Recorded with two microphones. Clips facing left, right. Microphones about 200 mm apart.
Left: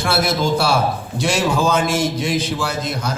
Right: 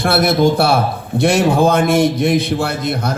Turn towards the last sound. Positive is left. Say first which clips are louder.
# right 4 dB
turn(degrees=-60)  # may be behind; listen again after turning